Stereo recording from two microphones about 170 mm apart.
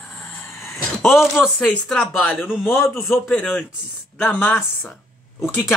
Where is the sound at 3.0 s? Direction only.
Centre (ahead or behind).